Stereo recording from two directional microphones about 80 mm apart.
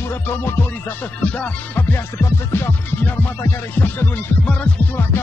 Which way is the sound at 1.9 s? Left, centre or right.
Left.